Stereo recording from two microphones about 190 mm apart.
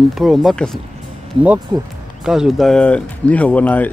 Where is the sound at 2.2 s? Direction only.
5° right (ahead or behind).